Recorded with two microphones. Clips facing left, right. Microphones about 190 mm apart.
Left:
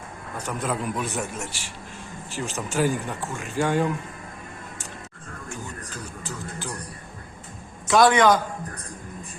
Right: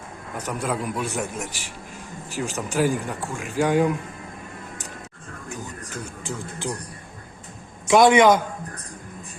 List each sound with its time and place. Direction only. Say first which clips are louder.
0.4 s a man's voice: right 1 dB; 10° right (ahead or behind)
5.9 s a sound: right 3 dB; 25° right (ahead or behind)
7.9 s a man's voice: right 3 dB; 20° right (ahead or behind)